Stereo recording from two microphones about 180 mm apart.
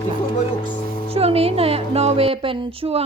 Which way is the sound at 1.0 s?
35° right (ahead or behind).